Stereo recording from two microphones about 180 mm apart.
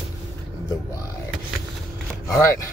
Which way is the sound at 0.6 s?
15° left (ahead or behind).